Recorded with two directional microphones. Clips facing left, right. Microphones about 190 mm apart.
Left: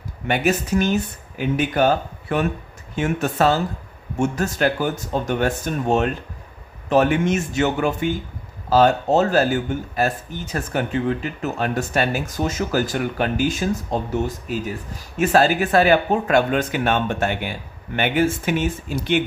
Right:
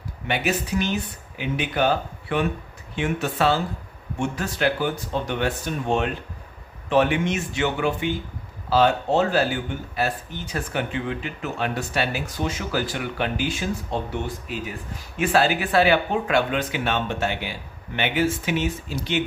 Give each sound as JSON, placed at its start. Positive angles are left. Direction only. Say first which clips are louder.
{"t": 0.3, "sound": "speech", "louder": "left 4 dB", "side_deg": 45}